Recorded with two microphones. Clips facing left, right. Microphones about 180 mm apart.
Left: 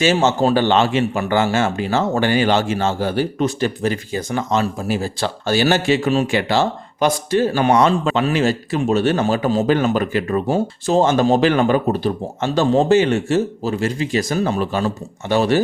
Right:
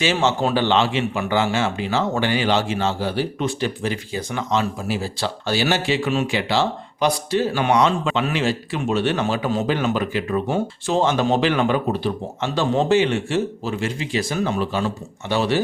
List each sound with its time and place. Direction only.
0.0 s a man's voice: 45° left (ahead or behind)